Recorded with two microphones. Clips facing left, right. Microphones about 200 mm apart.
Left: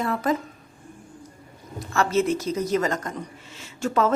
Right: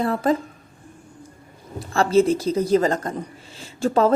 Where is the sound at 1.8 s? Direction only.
30° right (ahead or behind).